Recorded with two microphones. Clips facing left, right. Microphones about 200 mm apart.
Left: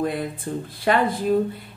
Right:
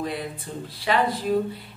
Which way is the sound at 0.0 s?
50° left (ahead or behind).